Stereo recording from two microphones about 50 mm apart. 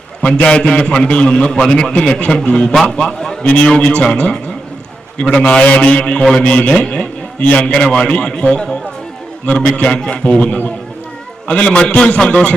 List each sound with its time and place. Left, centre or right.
0.4 s a man's voice: centre
2.2 s a man's voice: left
6.9 s a sound: left
7.6 s a man's voice: centre